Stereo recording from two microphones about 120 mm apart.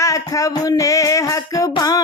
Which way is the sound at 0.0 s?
25° left (ahead or behind).